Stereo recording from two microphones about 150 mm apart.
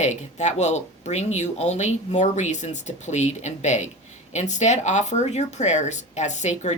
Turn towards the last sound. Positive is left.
turn(degrees=50)  # may be behind; listen again after turning